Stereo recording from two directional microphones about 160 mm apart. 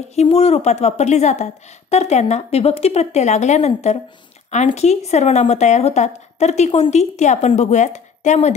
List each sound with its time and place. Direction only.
0.1 s speech: 40° left (ahead or behind)